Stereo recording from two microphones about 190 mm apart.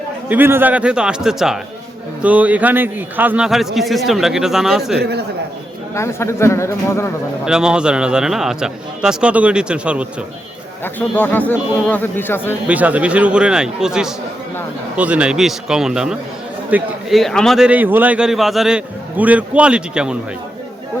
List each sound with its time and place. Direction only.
0.3 s a man's voice: 10° right (ahead or behind)
4.9 s a man's voice: 60° right (ahead or behind)
5.9 s speech: 15° left (ahead or behind)
7.4 s a man's voice: 5° right (ahead or behind)
10.8 s speech: 10° left (ahead or behind)
12.6 s a man's voice: 5° right (ahead or behind)